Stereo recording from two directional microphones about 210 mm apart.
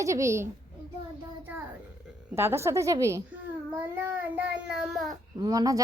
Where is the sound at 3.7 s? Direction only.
10° right (ahead or behind).